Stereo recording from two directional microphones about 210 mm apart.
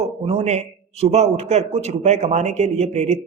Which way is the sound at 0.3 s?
30° right (ahead or behind).